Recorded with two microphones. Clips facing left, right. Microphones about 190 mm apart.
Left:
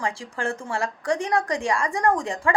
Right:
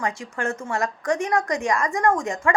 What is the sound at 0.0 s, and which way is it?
A woman's voice, 30° left (ahead or behind).